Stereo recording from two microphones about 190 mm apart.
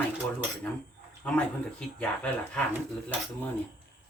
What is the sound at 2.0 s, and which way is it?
Speech, 5° left (ahead or behind).